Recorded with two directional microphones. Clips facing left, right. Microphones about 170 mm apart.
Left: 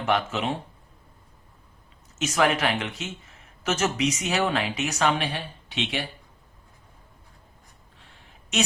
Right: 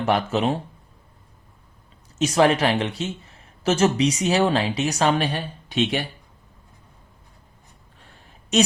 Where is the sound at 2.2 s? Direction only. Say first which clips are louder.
Right 5 dB; 35° right (ahead or behind).